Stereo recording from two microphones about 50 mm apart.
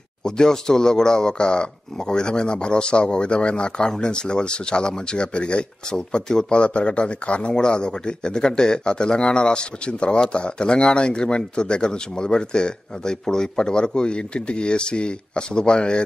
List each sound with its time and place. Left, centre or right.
0.2 s speech: centre